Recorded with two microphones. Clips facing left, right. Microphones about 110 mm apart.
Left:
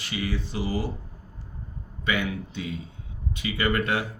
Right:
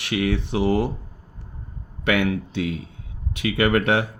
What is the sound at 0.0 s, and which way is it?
Speech, 65° right (ahead or behind).